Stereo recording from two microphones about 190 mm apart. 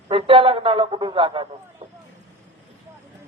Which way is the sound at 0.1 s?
30° right (ahead or behind).